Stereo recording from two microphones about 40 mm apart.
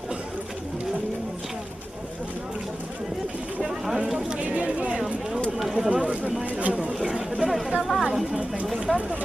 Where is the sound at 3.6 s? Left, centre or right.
Centre.